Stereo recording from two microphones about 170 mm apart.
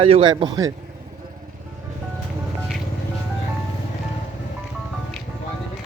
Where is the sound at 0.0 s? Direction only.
30° right (ahead or behind).